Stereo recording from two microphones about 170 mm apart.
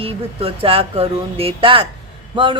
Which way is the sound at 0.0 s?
35° right (ahead or behind).